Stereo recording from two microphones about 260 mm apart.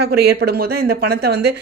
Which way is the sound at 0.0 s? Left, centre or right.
Right.